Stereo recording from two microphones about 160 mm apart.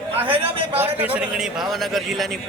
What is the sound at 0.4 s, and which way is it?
Speech, 35° right (ahead or behind).